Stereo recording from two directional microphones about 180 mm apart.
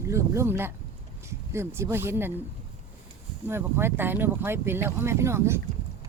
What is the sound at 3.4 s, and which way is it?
Speech, 15° right (ahead or behind).